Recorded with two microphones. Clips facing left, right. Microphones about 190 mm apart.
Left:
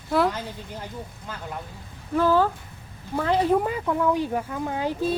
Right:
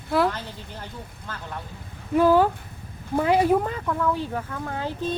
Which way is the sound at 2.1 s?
15° right (ahead or behind).